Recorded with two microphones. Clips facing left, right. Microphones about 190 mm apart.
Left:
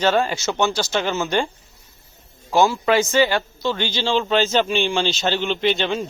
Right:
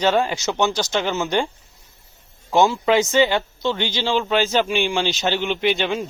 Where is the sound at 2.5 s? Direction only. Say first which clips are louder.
Even; 20° right (ahead or behind).